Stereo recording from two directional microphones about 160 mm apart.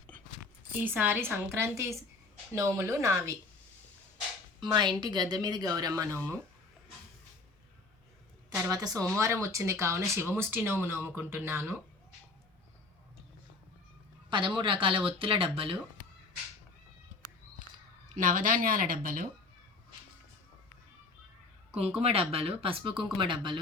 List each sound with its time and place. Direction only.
0.8 s speech: 10° right (ahead or behind)
4.6 s speech: 30° right (ahead or behind)
6.1 s speech: 10° left (ahead or behind)
8.4 s speech: 20° right (ahead or behind)
14.3 s speech: 30° right (ahead or behind)
18.2 s speech: 55° right (ahead or behind)
22.0 s speech: 40° right (ahead or behind)